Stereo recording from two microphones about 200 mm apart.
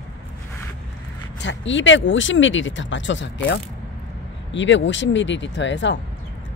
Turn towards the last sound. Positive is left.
turn(degrees=65)  # may be behind; listen again after turning